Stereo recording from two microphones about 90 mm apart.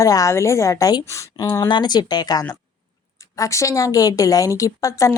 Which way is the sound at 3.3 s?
35° left (ahead or behind).